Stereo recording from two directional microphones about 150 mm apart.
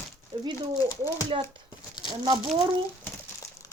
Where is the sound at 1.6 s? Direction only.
30° left (ahead or behind).